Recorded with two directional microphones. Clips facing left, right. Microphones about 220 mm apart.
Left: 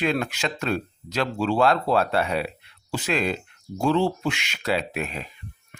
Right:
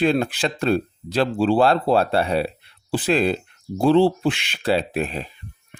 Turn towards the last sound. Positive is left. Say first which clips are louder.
# right 5 dB
turn(degrees=-30)  # may be behind; listen again after turning